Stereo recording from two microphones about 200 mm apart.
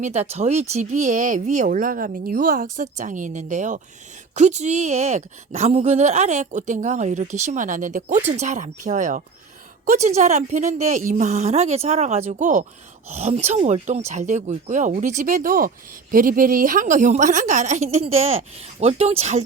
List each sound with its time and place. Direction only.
0.0 s a woman's voice: 35° right (ahead or behind)